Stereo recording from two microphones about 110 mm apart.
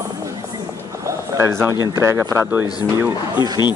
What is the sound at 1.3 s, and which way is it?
Speech, 25° right (ahead or behind).